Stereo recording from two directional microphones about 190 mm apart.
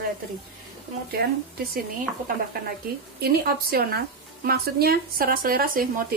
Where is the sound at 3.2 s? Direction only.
55° right (ahead or behind).